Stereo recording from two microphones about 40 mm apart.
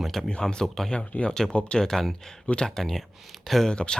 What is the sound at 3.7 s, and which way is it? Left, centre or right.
Speech, left.